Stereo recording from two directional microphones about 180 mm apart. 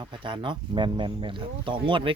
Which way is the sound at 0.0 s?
25° right (ahead or behind).